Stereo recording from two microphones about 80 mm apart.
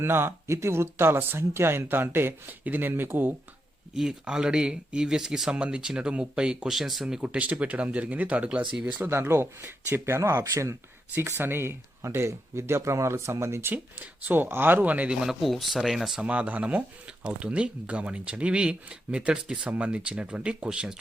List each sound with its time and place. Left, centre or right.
0.0 s speech: right
3.9 s speech: centre
9.0 s speech: right
11.1 s speech: right
13.7 s speech: right; by 16.2 s centre
16.2 s speech: centre